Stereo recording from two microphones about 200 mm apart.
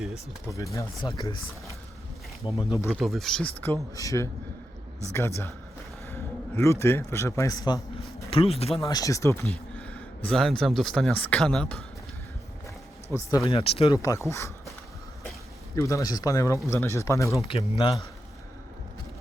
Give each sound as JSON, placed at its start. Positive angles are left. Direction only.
{"t": 0.4, "sound": "speech", "side_deg": 15}
{"t": 2.5, "sound": "speech", "side_deg": 0}
{"t": 2.7, "sound": "speech", "side_deg": 15}
{"t": 3.0, "sound": "speech", "side_deg": 0}
{"t": 6.6, "sound": "speech", "side_deg": 15}
{"t": 8.3, "sound": "speech", "side_deg": 30}
{"t": 8.8, "sound": "speech", "side_deg": 15}
{"t": 13.1, "sound": "speech", "side_deg": 15}
{"t": 13.5, "sound": "speech", "side_deg": 30}
{"t": 13.9, "sound": "speech", "side_deg": 15}
{"t": 15.7, "sound": "speech", "side_deg": 15}
{"t": 17.4, "sound": "speech", "side_deg": 25}